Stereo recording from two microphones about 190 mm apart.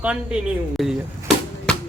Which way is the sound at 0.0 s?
5° right (ahead or behind).